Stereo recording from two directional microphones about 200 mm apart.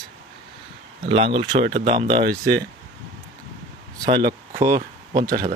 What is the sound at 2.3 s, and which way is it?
Speech, 50° right (ahead or behind).